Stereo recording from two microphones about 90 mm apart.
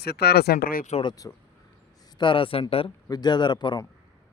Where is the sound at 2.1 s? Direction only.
70° left (ahead or behind); by 2.9 s 90° left.